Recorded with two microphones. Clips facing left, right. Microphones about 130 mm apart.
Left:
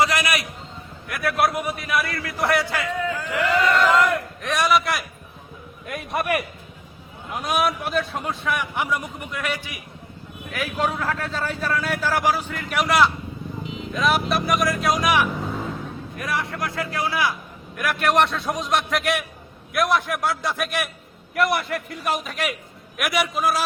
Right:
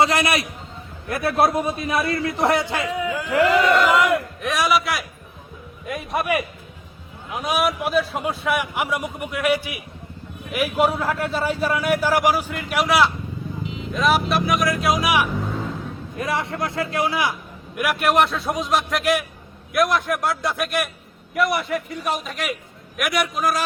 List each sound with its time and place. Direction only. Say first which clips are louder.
0.0 s a man's voice: right 3 dB; 25° right (ahead or behind)
4.4 s a man's voice: left 1 dB; centre (ahead or behind)
16.1 s a man's voice: right 3 dB; 25° right (ahead or behind)
17.7 s a man's voice: right 1 dB; 10° right (ahead or behind)